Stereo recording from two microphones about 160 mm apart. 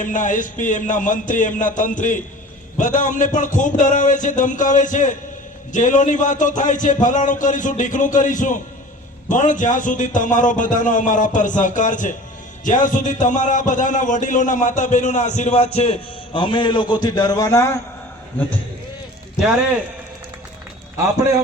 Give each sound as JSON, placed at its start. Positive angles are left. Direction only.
{"t": 0.0, "sound": "a man's voice", "side_deg": 55}